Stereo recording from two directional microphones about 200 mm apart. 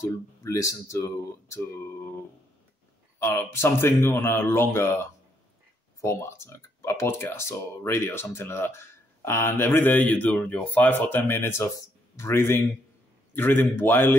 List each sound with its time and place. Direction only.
0.0 s speech: 15° left (ahead or behind)
3.2 s speech: 15° left (ahead or behind)